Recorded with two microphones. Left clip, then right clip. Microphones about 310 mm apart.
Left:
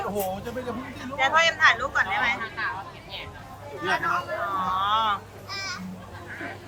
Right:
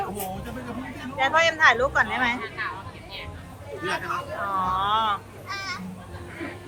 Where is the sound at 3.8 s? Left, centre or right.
Left.